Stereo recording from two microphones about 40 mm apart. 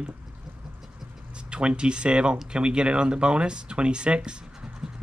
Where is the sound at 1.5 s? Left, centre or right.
Right.